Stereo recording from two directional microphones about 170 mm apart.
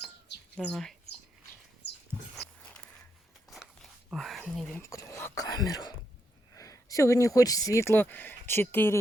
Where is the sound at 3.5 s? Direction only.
Centre (ahead or behind).